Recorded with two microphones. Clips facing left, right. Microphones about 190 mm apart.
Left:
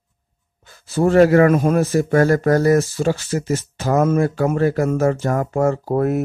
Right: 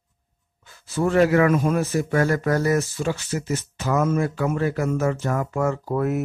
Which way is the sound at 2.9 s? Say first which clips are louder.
Left 6 dB; 35° left (ahead or behind).